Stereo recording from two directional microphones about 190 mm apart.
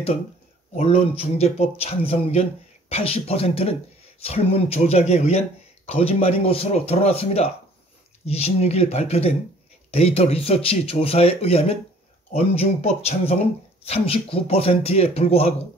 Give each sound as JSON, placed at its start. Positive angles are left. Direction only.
{"t": 0.7, "sound": "speech", "side_deg": 35}